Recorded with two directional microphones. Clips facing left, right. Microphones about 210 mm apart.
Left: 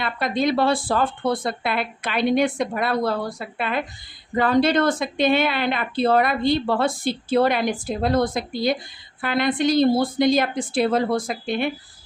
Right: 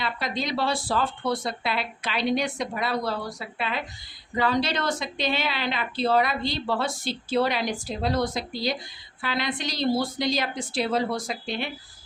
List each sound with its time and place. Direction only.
0.0 s a woman's voice: 55° left (ahead or behind)